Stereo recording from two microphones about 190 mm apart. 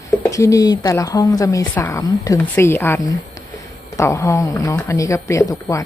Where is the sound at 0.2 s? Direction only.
15° left (ahead or behind).